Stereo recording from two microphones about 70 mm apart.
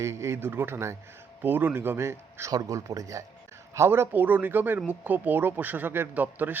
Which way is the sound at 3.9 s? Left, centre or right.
Right.